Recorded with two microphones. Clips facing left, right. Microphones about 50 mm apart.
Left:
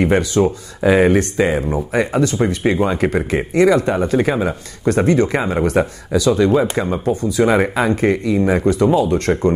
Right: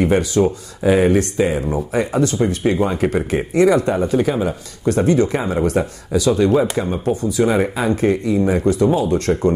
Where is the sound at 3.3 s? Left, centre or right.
Left.